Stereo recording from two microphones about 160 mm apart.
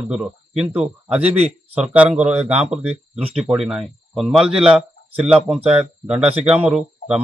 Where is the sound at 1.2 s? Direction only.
40° right (ahead or behind).